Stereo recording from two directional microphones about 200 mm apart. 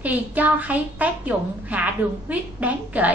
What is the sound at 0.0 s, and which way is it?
A woman's voice, 10° right (ahead or behind).